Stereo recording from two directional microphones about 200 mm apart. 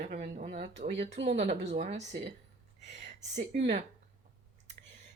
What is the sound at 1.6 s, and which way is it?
Speech, 50° right (ahead or behind).